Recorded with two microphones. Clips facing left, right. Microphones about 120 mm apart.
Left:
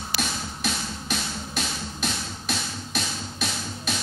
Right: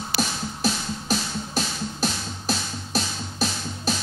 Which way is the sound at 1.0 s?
35° right (ahead or behind).